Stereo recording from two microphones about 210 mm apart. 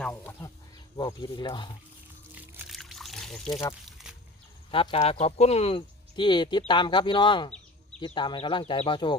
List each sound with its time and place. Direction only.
0.0 s a sound: 10° left (ahead or behind)
0.9 s speech: 20° left (ahead or behind)
2.3 s trickle: 10° right (ahead or behind)
4.7 s speech: 25° left (ahead or behind)